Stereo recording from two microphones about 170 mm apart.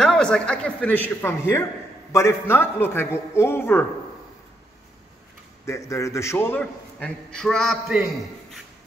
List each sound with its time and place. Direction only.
0.0 s a man's voice: 5° left (ahead or behind)
5.7 s a man's voice: 20° left (ahead or behind); by 8.5 s 5° right (ahead or behind)